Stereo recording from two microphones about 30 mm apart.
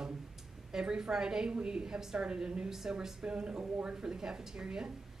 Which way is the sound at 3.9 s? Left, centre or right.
Right.